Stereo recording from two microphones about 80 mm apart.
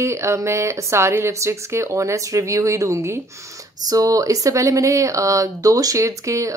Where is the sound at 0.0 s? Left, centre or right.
Right.